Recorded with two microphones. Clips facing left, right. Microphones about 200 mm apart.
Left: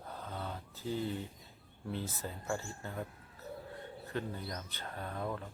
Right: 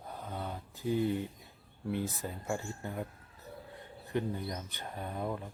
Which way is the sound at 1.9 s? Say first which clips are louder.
Right 4 dB; 15° right (ahead or behind).